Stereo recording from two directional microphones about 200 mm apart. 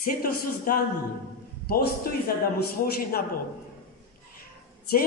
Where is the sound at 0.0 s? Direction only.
45° left (ahead or behind).